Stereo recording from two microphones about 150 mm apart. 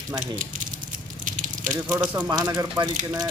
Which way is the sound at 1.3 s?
60° right (ahead or behind).